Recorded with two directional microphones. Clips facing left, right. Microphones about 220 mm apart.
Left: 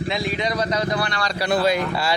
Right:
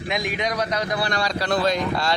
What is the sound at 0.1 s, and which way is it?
Speech, 15° right (ahead or behind).